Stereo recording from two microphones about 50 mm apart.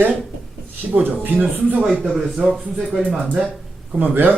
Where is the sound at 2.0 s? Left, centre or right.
Centre.